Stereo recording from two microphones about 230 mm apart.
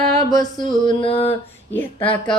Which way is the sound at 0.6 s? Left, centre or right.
Left.